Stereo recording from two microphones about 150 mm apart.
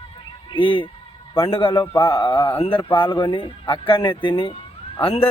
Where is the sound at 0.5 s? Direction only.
35° left (ahead or behind).